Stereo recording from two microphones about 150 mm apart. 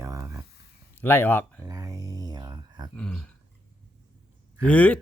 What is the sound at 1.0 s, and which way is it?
Speech, 15° left (ahead or behind).